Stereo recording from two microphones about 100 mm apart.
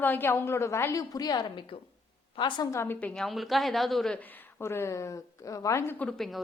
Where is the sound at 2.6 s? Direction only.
25° left (ahead or behind).